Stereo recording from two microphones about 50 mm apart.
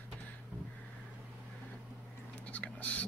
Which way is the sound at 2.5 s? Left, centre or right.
Left.